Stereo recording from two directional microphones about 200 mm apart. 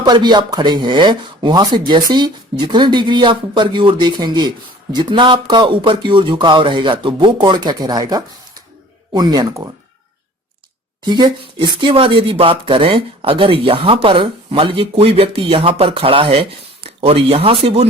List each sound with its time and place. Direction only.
0.0 s speech: 20° right (ahead or behind)
11.0 s speech: 20° right (ahead or behind)